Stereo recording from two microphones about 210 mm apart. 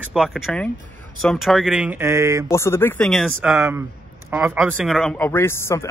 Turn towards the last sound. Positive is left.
turn(degrees=10)  # may be behind; listen again after turning